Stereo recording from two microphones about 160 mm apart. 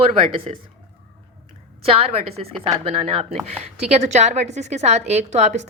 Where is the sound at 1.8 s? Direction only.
35° right (ahead or behind).